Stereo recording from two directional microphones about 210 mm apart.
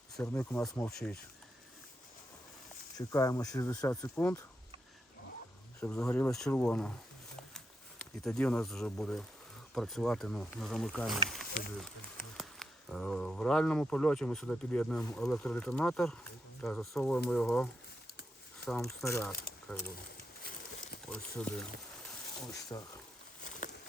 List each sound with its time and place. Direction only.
0.2 s speech: 10° left (ahead or behind)
3.0 s speech: 15° left (ahead or behind)
5.8 s speech: 10° left (ahead or behind)
12.4 s speech: centre (ahead or behind)
18.8 s speech: 15° left (ahead or behind)
21.1 s speech: 5° left (ahead or behind)
22.7 s speech: 15° left (ahead or behind)
23.4 s a sound: 40° left (ahead or behind)